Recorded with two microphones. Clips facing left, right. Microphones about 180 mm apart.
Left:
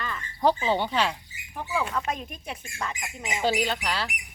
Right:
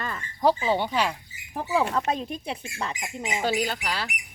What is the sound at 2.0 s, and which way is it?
Speech, 30° right (ahead or behind).